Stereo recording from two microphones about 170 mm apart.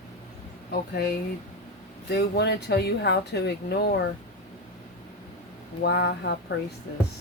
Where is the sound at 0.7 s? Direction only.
65° left (ahead or behind).